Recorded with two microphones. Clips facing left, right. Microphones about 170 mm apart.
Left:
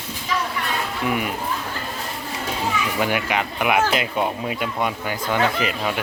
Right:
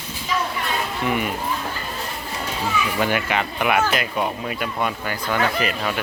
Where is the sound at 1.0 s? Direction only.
5° left (ahead or behind).